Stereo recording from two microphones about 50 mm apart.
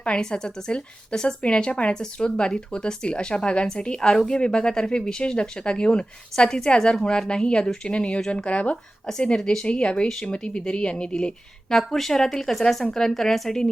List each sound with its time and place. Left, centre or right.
0.0 s speech: centre
11.7 s speech: centre